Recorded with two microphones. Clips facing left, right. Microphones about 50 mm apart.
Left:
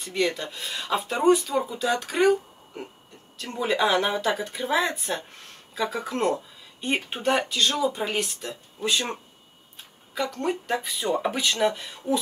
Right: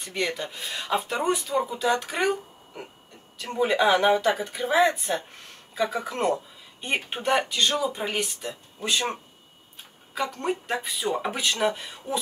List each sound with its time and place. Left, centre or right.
0.1 s speech: centre
0.6 s speech: right
3.3 s speech: right
3.8 s speech: centre
4.1 s speech: right
7.9 s speech: centre
8.2 s speech: right
10.1 s speech: centre